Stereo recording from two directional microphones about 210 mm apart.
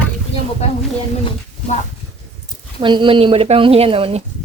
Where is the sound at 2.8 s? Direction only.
25° right (ahead or behind).